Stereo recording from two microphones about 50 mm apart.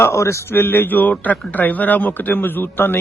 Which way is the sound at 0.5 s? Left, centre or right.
Left.